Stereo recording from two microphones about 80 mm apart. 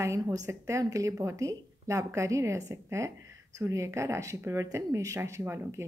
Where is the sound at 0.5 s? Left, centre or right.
Right.